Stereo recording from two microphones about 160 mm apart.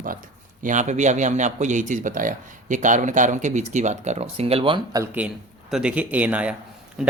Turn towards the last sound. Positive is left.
turn(degrees=-5)  # may be behind; listen again after turning